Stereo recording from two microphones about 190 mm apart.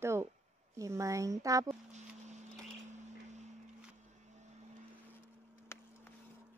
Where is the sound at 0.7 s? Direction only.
15° right (ahead or behind).